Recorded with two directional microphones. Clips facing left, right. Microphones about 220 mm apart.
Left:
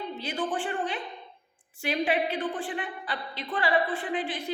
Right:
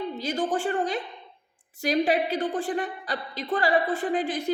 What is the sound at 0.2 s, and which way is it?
A woman's voice, 40° right (ahead or behind).